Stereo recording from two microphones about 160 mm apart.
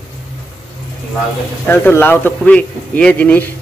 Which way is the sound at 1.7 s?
15° left (ahead or behind).